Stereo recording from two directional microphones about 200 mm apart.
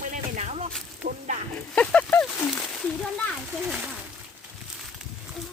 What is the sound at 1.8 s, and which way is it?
Speech, 5° left (ahead or behind).